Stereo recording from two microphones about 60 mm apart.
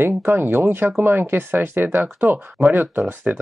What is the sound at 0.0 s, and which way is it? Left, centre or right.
Speech, right.